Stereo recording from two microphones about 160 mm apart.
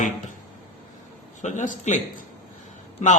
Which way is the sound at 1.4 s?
50° left (ahead or behind).